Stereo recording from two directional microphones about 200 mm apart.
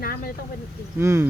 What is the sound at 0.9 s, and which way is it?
Speech, 10° right (ahead or behind).